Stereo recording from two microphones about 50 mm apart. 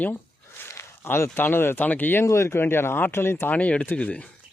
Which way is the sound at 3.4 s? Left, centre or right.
Left.